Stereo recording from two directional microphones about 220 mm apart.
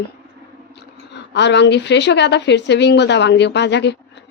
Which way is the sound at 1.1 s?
50° left (ahead or behind).